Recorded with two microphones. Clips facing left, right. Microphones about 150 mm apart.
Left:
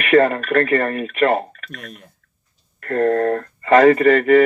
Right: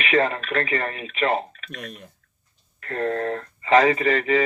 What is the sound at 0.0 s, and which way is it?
Speech, 50° left (ahead or behind).